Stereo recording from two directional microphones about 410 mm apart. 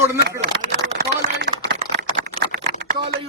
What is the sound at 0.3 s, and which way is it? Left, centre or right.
Typing, centre.